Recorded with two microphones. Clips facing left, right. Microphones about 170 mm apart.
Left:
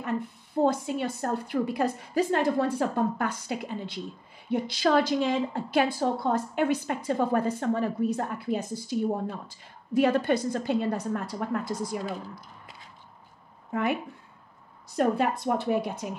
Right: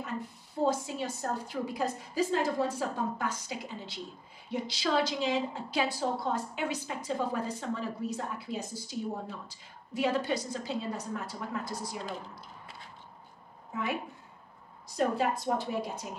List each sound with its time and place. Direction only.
0.7 s a woman's voice: 60° left (ahead or behind)
15.0 s a woman's voice: 60° left (ahead or behind)